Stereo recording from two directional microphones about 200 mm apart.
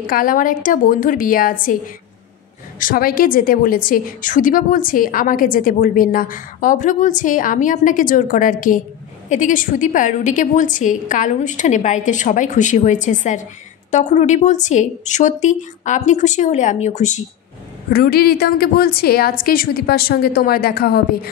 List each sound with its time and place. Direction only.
0.0 s a woman's voice: 45° left (ahead or behind)
2.8 s a woman's voice: 45° left (ahead or behind)
17.9 s a woman's voice: 50° left (ahead or behind)